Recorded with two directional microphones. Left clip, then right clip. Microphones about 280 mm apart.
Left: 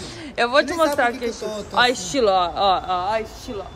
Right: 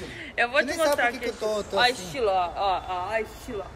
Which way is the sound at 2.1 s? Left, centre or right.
Left.